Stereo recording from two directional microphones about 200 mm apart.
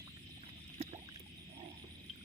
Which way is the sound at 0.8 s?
35° right (ahead or behind).